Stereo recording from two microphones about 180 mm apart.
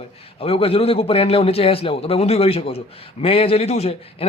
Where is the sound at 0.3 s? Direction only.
30° left (ahead or behind).